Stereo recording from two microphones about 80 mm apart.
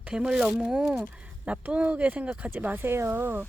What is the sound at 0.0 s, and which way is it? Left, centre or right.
Speech, centre.